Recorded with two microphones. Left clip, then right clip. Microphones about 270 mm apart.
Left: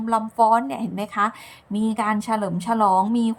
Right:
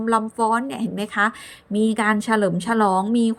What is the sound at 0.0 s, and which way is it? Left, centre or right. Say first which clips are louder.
A woman's voice: left 1 dB; centre.